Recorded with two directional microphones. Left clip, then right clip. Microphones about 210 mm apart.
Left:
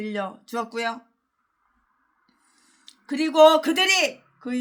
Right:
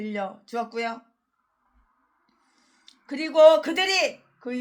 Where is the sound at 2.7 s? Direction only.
20° left (ahead or behind).